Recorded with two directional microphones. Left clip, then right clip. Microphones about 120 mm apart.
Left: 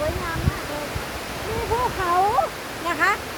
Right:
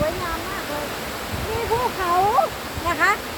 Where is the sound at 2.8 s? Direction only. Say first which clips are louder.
Right 2 dB; 15° left (ahead or behind).